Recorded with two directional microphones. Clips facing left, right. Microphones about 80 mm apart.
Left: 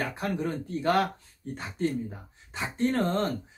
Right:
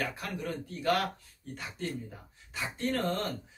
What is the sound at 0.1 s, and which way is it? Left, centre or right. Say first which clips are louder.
Speech: left 6 dB; left.